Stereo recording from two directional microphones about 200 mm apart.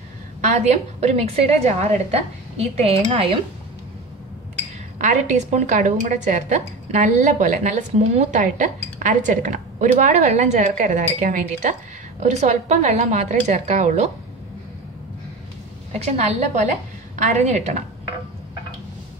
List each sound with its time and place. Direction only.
0.4 s a woman's voice: 35° right (ahead or behind)
4.9 s a woman's voice: 40° right (ahead or behind)
15.9 s a woman's voice: 35° right (ahead or behind)